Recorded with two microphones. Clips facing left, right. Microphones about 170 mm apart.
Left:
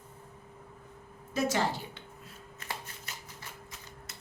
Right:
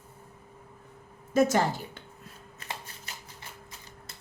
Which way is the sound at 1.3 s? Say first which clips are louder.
Right 7 dB; 50° right (ahead or behind).